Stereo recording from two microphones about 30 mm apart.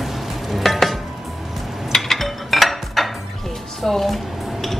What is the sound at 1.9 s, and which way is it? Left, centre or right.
Dishes, centre.